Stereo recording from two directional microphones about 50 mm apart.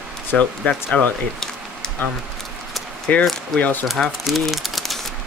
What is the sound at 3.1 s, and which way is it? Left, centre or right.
Speech, left.